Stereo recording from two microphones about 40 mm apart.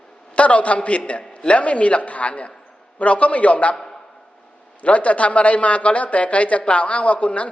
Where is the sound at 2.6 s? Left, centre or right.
Centre.